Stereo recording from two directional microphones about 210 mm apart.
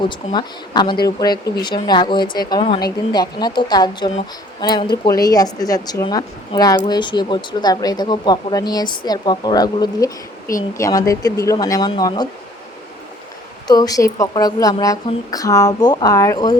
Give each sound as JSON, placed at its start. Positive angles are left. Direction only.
{"t": 0.0, "sound": "a woman's voice", "side_deg": 20}
{"t": 13.7, "sound": "a woman's voice", "side_deg": 20}